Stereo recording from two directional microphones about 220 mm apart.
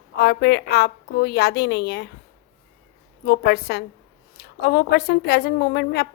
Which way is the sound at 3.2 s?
45° left (ahead or behind).